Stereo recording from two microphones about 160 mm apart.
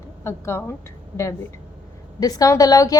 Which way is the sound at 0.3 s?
15° left (ahead or behind).